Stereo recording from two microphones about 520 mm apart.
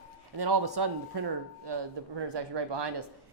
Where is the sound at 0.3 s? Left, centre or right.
Right.